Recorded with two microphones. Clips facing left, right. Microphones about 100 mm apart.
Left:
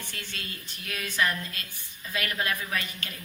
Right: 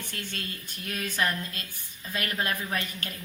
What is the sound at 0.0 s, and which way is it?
A woman's voice, 50° right (ahead or behind).